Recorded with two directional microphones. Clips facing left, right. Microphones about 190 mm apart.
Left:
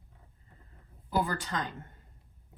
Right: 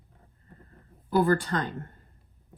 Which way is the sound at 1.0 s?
55° right (ahead or behind).